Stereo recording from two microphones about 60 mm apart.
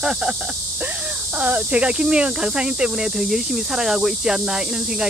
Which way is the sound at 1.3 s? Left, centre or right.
Right.